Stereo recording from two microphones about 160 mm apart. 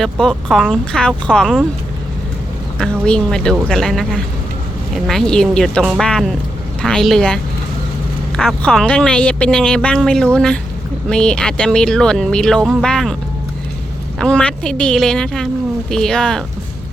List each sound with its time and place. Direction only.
0.0 s speech: 5° left (ahead or behind)
2.7 s speech: 5° left (ahead or behind)
8.4 s speech: 5° left (ahead or behind)
14.2 s speech: 5° left (ahead or behind)